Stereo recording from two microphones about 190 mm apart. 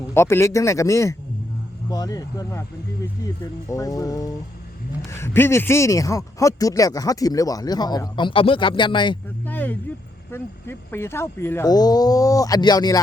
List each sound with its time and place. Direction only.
0.1 s speech: 15° left (ahead or behind)
3.7 s speech: 20° left (ahead or behind)
9.5 s a sound: 10° left (ahead or behind)
10.3 s speech: 10° left (ahead or behind)